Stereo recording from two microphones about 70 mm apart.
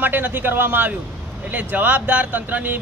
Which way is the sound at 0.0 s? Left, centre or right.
Right.